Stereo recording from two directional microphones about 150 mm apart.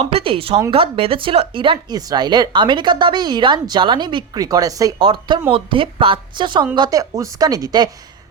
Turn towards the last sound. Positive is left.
turn(degrees=-25)  # may be behind; listen again after turning